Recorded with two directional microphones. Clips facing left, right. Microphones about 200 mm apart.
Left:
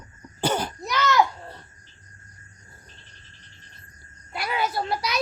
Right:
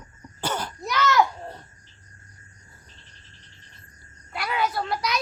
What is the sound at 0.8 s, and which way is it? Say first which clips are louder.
Speech: right 2 dB; centre (ahead or behind).